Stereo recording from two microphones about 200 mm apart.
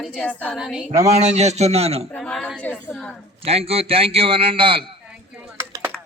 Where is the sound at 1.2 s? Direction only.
35° right (ahead or behind).